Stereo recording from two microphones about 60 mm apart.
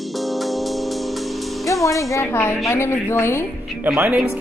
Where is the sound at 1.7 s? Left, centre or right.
Left.